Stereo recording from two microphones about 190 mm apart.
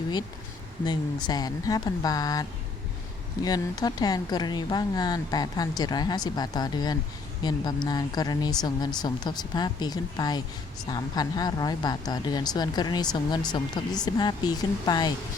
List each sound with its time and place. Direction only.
0.9 s speech: 20° left (ahead or behind)